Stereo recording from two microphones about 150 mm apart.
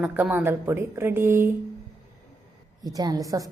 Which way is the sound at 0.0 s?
10° right (ahead or behind).